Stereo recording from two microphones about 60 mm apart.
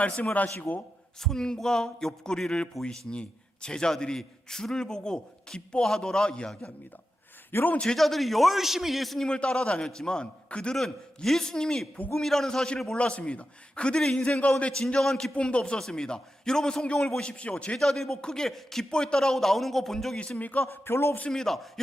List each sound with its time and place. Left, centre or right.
0.3 s a man's voice: left
1.2 s a man's voice: centre
7.5 s a man's voice: left
7.9 s a man's voice: centre
9.2 s a man's voice: centre
20.1 s a man's voice: centre
20.8 s a man's voice: left
21.2 s a man's voice: centre